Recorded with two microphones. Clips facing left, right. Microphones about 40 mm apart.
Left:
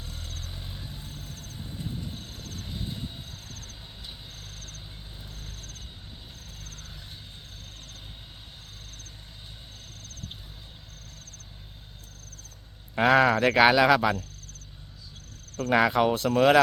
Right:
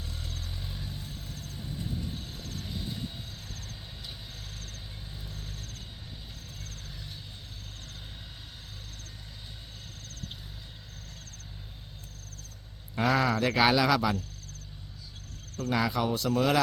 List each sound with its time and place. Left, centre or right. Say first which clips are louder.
0.9 s vehicle: right 1 dB; left
1.2 s vehicle: even; centre
1.5 s vehicle: left 1 dB; left
2.4 s train: even; centre
2.6 s vehicle: left 1 dB; left
3.5 s vehicle: even; centre
13.0 s speech: left 6 dB; left
15.7 s speech: left 7 dB; left